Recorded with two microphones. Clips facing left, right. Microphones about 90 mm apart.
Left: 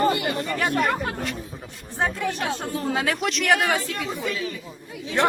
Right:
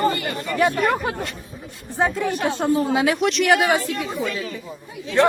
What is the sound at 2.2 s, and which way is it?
A woman's voice, centre (ahead or behind).